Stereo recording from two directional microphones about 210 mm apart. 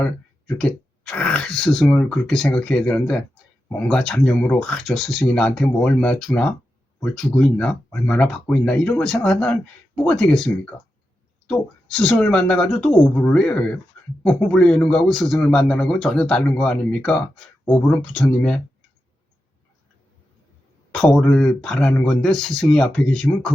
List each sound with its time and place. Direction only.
0.0 s a man's voice: 5° left (ahead or behind)
20.9 s a man's voice: centre (ahead or behind)